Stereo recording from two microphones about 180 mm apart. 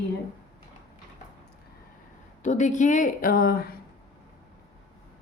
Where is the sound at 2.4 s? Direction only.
45° left (ahead or behind).